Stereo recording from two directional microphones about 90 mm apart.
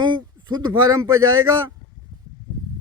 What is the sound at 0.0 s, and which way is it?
Speech, 55° right (ahead or behind).